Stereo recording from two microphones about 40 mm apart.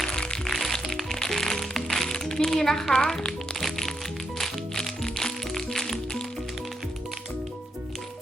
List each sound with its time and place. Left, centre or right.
0.1 s music: left
0.4 s music: centre
2.1 s music: centre
2.5 s a woman's voice: centre
3.1 s music: centre